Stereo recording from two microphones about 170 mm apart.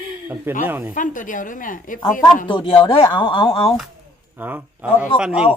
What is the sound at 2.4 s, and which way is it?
A woman's voice, 30° left (ahead or behind).